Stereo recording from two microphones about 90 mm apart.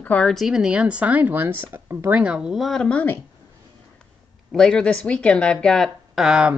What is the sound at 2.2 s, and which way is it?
Speech, 10° right (ahead or behind).